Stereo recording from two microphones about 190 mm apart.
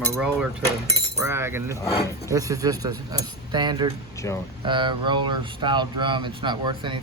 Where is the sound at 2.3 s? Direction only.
20° right (ahead or behind).